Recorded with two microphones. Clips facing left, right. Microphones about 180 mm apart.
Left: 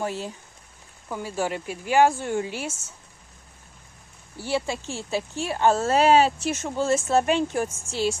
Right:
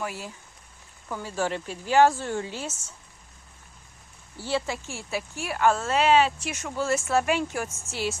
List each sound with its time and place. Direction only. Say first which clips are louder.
0.0 s speech: left 5 dB; 25° left (ahead or behind)
1.0 s speech: left 1 dB; 15° left (ahead or behind)
4.4 s speech: left 2 dB; 15° left (ahead or behind); by 6.5 s 40° left (ahead or behind)
6.6 s speech: left 2 dB; 25° left (ahead or behind)